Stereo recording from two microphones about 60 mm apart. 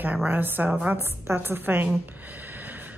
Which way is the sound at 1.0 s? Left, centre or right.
Right.